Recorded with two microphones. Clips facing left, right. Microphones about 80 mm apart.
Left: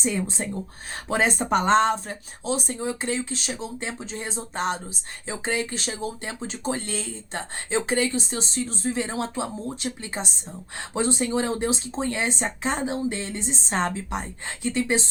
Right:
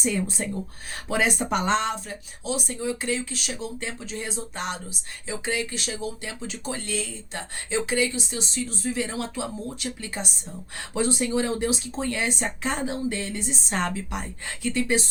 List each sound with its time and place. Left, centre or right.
0.0 s speech: left